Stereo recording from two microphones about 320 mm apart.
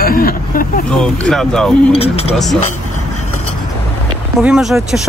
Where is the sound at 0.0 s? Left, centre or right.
Left.